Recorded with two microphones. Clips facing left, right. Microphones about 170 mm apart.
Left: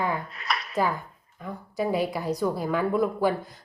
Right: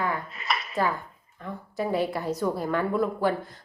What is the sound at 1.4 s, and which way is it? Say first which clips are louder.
A woman's voice: left 2 dB; 15° left (ahead or behind).